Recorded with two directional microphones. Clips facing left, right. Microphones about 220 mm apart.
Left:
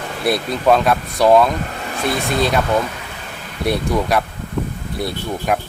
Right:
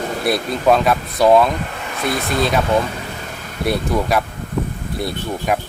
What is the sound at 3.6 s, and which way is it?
Speech, centre (ahead or behind).